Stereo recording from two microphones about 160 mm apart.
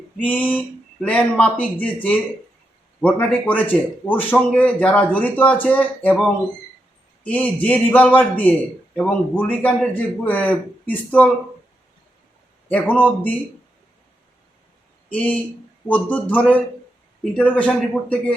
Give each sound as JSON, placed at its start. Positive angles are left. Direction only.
{"t": 0.2, "sound": "a man's voice", "side_deg": 10}
{"t": 12.6, "sound": "a man's voice", "side_deg": 10}
{"t": 15.1, "sound": "a man's voice", "side_deg": 5}